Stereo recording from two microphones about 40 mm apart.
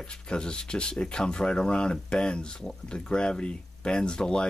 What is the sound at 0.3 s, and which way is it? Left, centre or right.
Speech, left.